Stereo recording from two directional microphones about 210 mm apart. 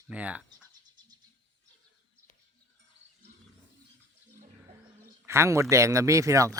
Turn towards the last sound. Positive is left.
turn(degrees=-15)  # may be behind; listen again after turning